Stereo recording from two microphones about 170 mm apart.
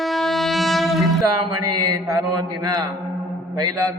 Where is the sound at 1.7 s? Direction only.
20° right (ahead or behind).